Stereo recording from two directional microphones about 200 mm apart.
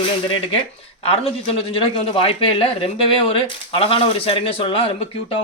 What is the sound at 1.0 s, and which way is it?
A man's voice, 30° left (ahead or behind).